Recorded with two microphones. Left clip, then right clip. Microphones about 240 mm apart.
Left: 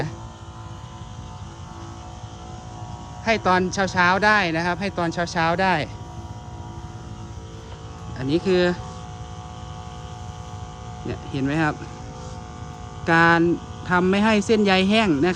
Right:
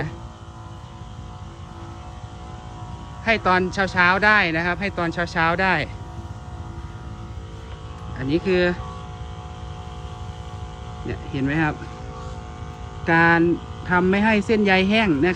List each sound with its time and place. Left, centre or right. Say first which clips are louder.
3.2 s speech: right 1 dB; centre
8.2 s speech: even; centre
11.1 s speech: right 1 dB; left
13.1 s speech: even; left